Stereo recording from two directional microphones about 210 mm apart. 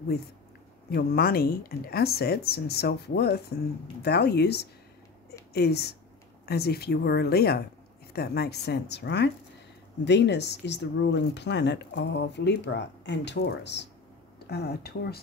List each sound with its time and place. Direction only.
0.8 s speech: 45° left (ahead or behind)